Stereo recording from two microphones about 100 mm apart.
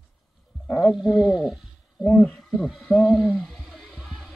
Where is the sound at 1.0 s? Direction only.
5° right (ahead or behind).